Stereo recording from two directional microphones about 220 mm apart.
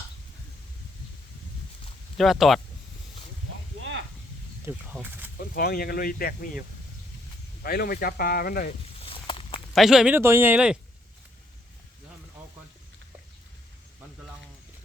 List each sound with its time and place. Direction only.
2.1 s speech: centre (ahead or behind)
3.8 s a sound: 55° right (ahead or behind)
4.6 s speech: 10° right (ahead or behind)
5.5 s speech: 45° left (ahead or behind)
7.6 s speech: 45° left (ahead or behind)
9.0 s walk: 25° left (ahead or behind)
9.7 s speech: centre (ahead or behind)